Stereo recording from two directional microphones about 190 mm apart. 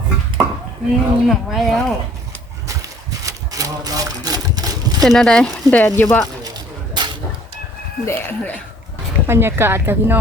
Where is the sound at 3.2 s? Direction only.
20° right (ahead or behind).